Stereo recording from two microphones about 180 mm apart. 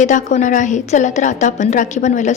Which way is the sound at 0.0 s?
45° left (ahead or behind).